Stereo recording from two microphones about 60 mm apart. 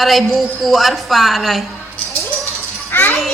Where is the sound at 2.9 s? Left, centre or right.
Left.